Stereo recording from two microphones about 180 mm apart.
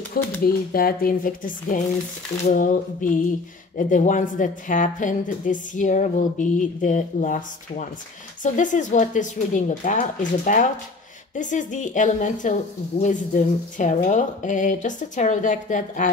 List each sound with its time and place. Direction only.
0.2 s speech: 55° left (ahead or behind)